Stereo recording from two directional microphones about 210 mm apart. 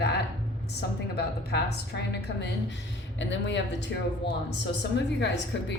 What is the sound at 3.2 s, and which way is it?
A woman's voice, 60° left (ahead or behind).